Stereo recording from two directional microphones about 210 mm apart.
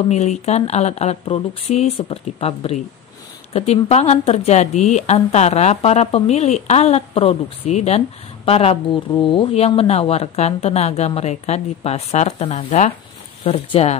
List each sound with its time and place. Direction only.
0.1 s a woman's voice: 30° left (ahead or behind)